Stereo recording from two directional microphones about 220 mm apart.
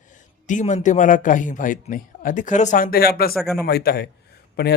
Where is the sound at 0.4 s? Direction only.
35° left (ahead or behind).